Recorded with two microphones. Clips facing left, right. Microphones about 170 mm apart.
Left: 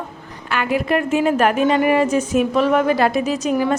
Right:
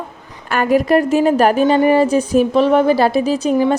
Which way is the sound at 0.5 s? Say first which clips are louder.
Right 6 dB; 40° right (ahead or behind).